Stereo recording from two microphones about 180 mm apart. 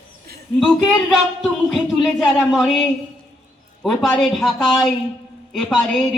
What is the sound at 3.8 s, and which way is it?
Speech, centre (ahead or behind).